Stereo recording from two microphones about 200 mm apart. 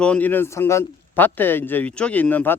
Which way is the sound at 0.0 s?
5° left (ahead or behind).